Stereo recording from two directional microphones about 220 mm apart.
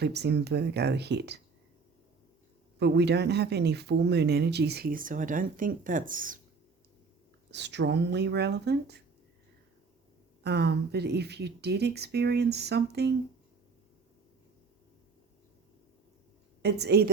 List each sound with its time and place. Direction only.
0.0 s speech: 50° right (ahead or behind)
2.7 s speech: 50° right (ahead or behind)
7.5 s speech: 50° right (ahead or behind)
10.4 s speech: 50° right (ahead or behind)
16.6 s speech: 50° right (ahead or behind)